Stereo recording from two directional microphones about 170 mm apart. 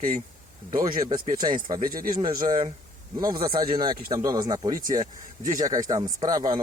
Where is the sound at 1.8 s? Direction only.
55° right (ahead or behind).